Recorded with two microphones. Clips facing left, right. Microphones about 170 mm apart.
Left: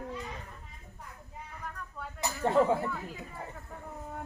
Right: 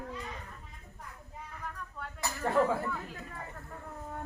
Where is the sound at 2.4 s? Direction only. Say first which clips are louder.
Left 3 dB; 20° left (ahead or behind).